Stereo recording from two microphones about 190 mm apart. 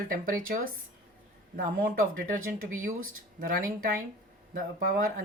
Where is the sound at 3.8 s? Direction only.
50° right (ahead or behind).